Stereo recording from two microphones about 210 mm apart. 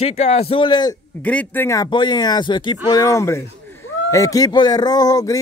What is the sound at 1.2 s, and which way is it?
Speech, 10° left (ahead or behind).